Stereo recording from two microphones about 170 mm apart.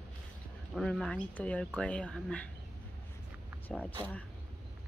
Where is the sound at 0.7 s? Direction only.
Centre (ahead or behind).